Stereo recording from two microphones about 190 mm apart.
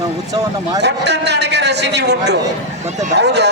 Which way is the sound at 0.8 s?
60° right (ahead or behind).